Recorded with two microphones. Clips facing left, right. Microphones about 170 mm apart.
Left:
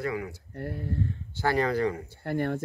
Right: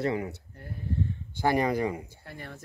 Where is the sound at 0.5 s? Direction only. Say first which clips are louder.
Left 12 dB; 75° left (ahead or behind).